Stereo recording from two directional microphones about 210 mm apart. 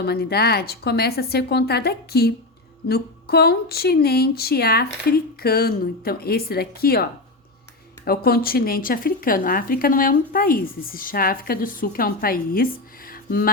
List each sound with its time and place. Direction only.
0.0 s speech: 50° left (ahead or behind)